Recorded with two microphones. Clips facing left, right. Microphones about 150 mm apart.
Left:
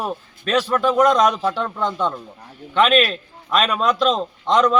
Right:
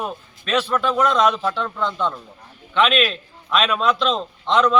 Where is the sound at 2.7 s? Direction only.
45° left (ahead or behind).